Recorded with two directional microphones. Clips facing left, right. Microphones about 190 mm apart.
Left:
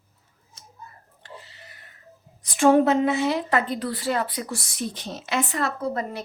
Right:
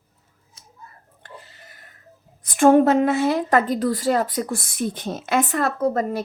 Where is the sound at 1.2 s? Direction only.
50° right (ahead or behind).